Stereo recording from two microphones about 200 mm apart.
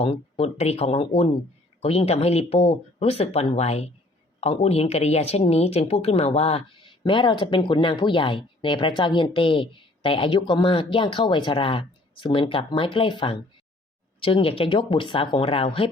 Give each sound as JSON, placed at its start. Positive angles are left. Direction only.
{"t": 0.0, "sound": "speech", "side_deg": 30}